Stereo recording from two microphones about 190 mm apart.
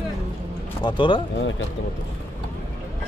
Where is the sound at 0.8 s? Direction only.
25° left (ahead or behind).